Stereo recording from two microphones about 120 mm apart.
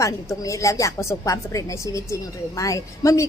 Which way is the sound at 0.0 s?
25° left (ahead or behind).